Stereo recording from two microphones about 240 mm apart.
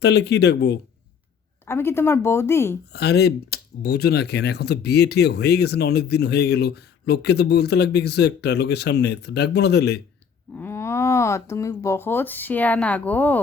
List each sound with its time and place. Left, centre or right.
0.0 s speech: left
1.6 s a woman's voice: centre
2.9 s speech: left
10.6 s speech: centre